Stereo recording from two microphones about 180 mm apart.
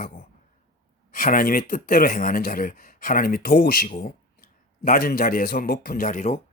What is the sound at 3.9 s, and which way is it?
A man's voice, 45° left (ahead or behind).